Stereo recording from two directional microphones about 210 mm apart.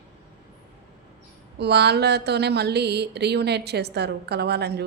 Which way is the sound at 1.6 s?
50° right (ahead or behind).